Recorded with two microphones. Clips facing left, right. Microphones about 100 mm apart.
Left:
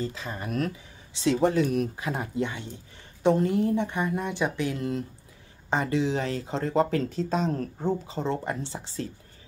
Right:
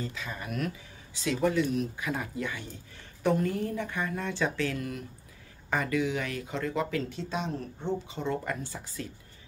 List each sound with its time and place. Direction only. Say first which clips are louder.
0.1 s speech: left 4 dB; 35° left (ahead or behind)